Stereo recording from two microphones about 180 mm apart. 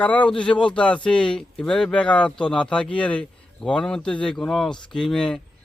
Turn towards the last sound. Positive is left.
turn(degrees=5)  # may be behind; listen again after turning